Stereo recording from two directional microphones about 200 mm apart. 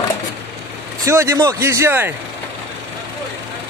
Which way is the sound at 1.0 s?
15° right (ahead or behind).